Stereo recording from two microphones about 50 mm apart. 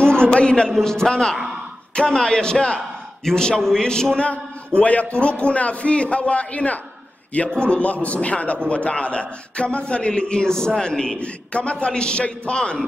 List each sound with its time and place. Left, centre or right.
0.3 s a man's voice: centre
4.3 s a man's voice: left